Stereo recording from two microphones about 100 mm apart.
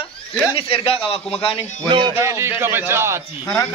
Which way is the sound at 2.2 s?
25° right (ahead or behind).